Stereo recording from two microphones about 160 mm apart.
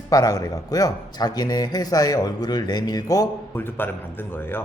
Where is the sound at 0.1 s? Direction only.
20° left (ahead or behind).